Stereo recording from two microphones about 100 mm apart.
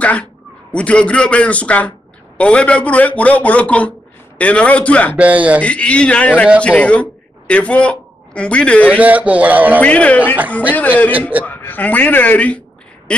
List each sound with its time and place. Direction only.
0.0 s a sound: 15° left (ahead or behind)
0.7 s speech: 10° left (ahead or behind)
5.1 s a man's voice: 15° right (ahead or behind)
5.6 s a man's voice: 10° left (ahead or behind)
8.9 s a man's voice: 15° right (ahead or behind)
9.8 s speech: 15° left (ahead or behind)